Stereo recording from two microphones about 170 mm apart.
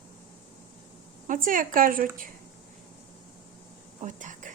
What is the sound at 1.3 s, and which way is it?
A woman's voice, 50° right (ahead or behind).